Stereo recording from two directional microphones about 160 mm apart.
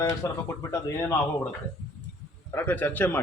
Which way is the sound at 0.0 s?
20° left (ahead or behind).